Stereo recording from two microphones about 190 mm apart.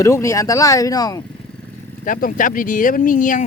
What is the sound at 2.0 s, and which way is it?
Speech, 45° left (ahead or behind).